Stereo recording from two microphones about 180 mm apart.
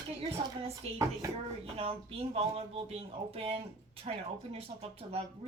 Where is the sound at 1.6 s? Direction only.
35° right (ahead or behind).